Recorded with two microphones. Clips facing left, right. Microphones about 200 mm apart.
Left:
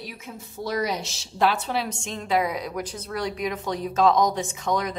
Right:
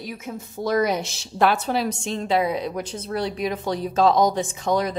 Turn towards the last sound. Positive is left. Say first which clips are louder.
# right 3 dB
turn(degrees=-35)  # may be behind; listen again after turning